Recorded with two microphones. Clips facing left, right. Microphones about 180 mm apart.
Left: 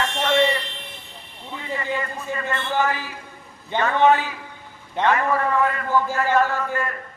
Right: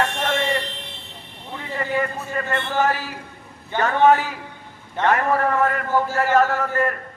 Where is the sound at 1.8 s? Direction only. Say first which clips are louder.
Right 7 dB; 50° right (ahead or behind).